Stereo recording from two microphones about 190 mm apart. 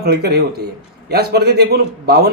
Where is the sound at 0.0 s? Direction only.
55° right (ahead or behind).